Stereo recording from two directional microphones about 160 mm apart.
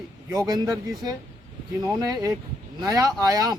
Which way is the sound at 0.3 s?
25° right (ahead or behind).